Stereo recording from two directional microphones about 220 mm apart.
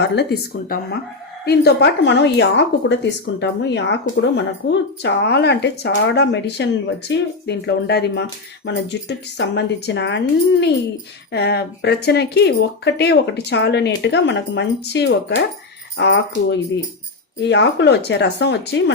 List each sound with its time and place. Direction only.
0.0 s a woman's voice: 50° left (ahead or behind)
11.3 s a woman's voice: 50° left (ahead or behind)